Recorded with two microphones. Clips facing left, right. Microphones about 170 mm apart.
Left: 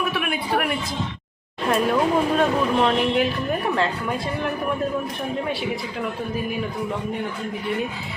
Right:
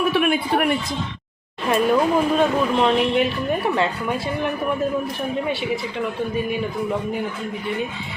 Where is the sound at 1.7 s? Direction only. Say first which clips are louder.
Right 2 dB; centre (ahead or behind).